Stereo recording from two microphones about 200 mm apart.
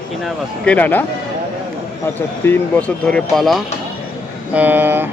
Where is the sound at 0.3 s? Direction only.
5° left (ahead or behind).